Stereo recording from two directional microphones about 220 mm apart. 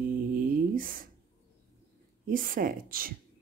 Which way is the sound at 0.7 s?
40° right (ahead or behind).